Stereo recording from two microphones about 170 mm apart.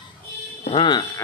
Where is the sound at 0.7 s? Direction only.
25° left (ahead or behind).